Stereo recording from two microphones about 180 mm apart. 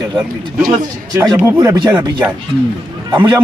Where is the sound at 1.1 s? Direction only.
20° right (ahead or behind).